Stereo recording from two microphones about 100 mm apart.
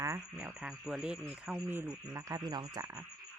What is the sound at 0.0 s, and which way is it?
Speech, 30° right (ahead or behind).